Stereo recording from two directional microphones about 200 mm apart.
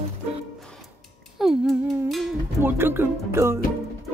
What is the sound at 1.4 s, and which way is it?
Speech, centre (ahead or behind).